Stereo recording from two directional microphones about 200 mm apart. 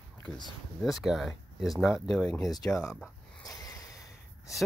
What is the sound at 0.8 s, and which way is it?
Speech, centre (ahead or behind).